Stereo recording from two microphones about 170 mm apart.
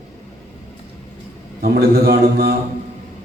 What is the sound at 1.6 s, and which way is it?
Speech, 65° right (ahead or behind).